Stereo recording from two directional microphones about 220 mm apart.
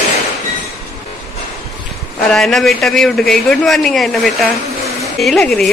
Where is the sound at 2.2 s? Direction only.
Centre (ahead or behind).